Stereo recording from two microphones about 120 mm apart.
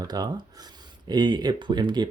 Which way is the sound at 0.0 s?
35° right (ahead or behind).